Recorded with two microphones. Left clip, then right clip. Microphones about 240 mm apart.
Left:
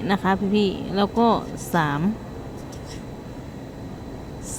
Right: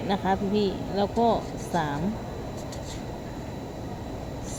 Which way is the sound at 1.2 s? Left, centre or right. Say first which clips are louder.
Left 4 dB; left.